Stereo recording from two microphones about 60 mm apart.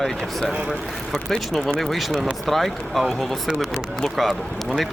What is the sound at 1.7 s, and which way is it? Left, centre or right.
Speech, centre.